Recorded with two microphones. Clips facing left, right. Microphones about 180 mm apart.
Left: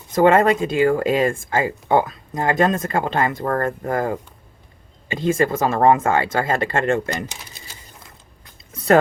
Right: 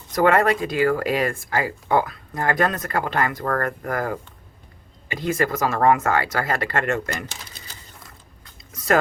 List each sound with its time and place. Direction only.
0.1 s speech: 25° left (ahead or behind)
7.1 s speech: 15° left (ahead or behind)
8.7 s a sound: 30° left (ahead or behind)